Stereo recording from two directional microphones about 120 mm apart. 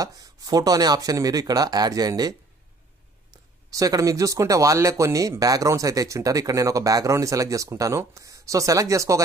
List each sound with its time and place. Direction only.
0.0 s speech: 30° right (ahead or behind)
3.7 s speech: 30° right (ahead or behind)